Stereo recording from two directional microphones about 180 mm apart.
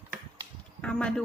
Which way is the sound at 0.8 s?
5° left (ahead or behind).